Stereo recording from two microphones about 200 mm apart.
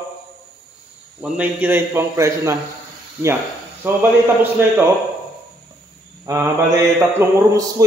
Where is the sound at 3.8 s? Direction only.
10° right (ahead or behind).